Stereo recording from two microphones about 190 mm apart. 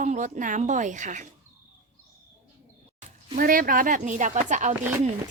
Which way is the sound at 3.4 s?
45° right (ahead or behind).